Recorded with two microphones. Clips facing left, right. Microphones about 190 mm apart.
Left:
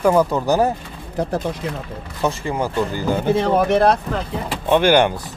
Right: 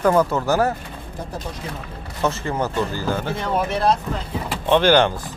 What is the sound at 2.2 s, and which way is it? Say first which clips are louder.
Speech: left 1 dB; 10° left (ahead or behind).